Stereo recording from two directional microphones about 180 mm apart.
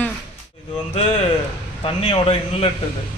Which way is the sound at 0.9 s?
35° left (ahead or behind).